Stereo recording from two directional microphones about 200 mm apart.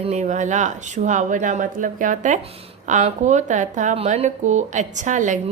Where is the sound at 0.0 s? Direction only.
35° right (ahead or behind).